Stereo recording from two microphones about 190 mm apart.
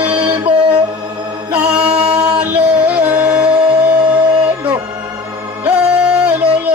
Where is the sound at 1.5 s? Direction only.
5° right (ahead or behind).